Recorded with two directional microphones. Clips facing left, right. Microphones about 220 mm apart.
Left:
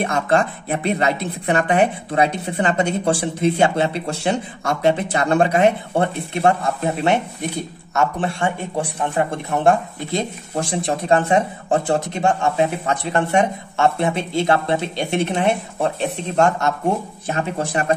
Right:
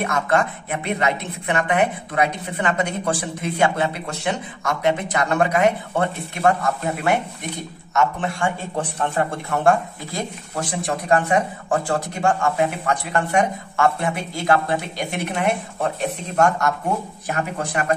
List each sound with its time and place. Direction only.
0.0 s a man's voice: 30° left (ahead or behind)
8.5 s speech: 15° left (ahead or behind)